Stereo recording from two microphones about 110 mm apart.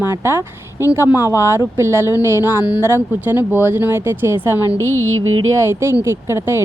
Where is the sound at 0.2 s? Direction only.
25° right (ahead or behind).